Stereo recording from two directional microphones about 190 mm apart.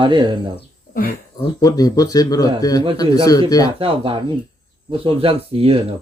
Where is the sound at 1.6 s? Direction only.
20° left (ahead or behind).